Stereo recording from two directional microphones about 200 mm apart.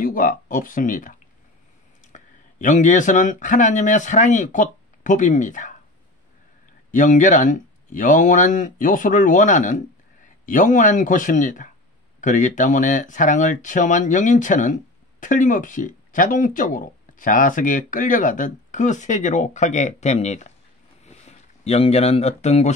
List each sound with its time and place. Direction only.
0.0 s speech: 45° left (ahead or behind)
2.1 s speech: 40° left (ahead or behind)
6.9 s speech: 40° left (ahead or behind)
21.0 s a sound: 35° left (ahead or behind)